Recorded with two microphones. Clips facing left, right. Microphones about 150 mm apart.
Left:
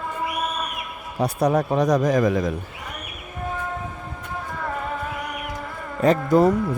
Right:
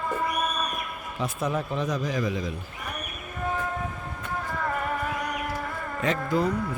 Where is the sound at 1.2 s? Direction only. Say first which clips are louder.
Left 8 dB; 70° left (ahead or behind).